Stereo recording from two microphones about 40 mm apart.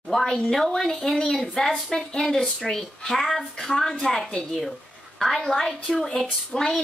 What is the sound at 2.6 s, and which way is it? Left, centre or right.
Speech, centre.